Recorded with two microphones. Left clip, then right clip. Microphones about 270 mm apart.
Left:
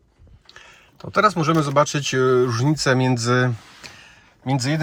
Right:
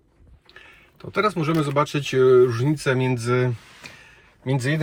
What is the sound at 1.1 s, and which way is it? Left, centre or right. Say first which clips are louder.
Speech: left 5 dB; centre.